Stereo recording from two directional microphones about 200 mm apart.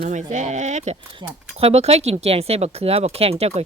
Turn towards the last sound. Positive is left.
turn(degrees=-30)  # may be behind; listen again after turning